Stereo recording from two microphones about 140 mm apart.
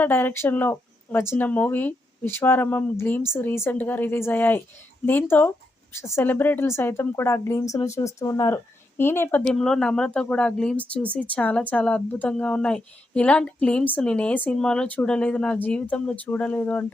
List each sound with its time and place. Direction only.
0.0 s speech: 15° left (ahead or behind)